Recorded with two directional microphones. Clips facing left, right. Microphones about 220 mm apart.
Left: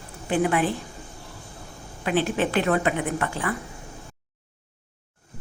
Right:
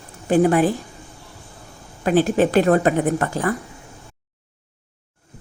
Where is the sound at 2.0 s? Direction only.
40° right (ahead or behind).